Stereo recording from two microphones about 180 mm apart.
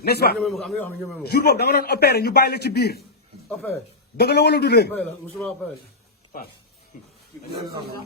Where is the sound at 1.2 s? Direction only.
60° left (ahead or behind).